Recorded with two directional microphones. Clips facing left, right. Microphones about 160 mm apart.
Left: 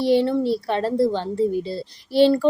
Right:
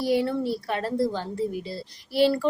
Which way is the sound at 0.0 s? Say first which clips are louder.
Left 5 dB; 25° left (ahead or behind).